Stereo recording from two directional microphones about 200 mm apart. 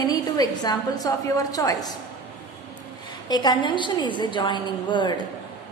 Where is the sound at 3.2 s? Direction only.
20° left (ahead or behind).